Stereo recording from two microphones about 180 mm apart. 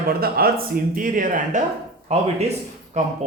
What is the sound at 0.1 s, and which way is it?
Speech, 55° right (ahead or behind).